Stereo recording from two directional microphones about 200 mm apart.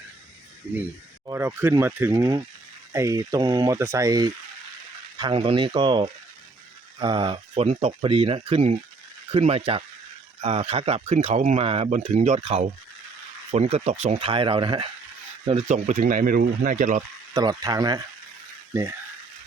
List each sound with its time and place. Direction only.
1.3 s speech: 10° right (ahead or behind)
15.4 s speech: 35° right (ahead or behind)
17.3 s speech: 20° right (ahead or behind)